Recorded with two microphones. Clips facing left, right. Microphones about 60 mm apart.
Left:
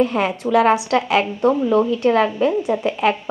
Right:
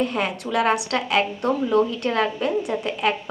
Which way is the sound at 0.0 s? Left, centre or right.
Left.